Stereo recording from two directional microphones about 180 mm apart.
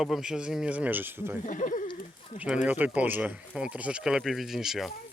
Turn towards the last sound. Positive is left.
turn(degrees=0)  # may be behind; listen again after turning